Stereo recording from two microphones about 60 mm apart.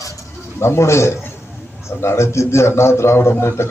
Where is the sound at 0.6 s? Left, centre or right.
Left.